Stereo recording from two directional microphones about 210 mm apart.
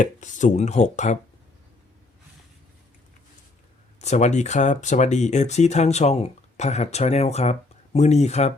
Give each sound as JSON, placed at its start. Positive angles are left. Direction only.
{"t": 0.0, "sound": "speech", "side_deg": 35}
{"t": 4.0, "sound": "speech", "side_deg": 35}